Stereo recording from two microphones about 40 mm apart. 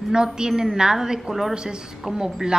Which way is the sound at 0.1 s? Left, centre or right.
Centre.